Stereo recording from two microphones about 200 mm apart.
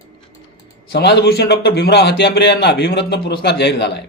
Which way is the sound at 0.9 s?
55° left (ahead or behind).